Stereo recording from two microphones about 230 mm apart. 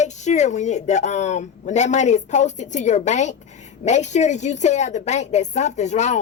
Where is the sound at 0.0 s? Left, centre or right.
Left.